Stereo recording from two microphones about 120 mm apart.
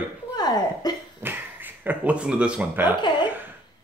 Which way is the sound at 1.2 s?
15° right (ahead or behind).